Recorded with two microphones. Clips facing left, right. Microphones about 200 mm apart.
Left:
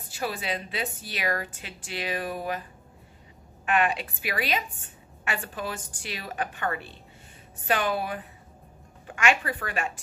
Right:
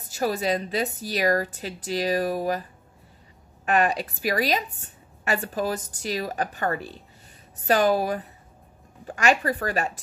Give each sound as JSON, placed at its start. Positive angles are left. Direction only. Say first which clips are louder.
{"t": 0.1, "sound": "a woman's voice", "louder": "right 7 dB", "side_deg": -40}
{"t": 3.6, "sound": "a woman's voice", "louder": "right 3 dB", "side_deg": -40}